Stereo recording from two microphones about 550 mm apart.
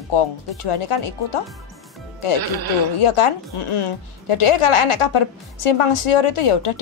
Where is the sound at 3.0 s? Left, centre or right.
Left.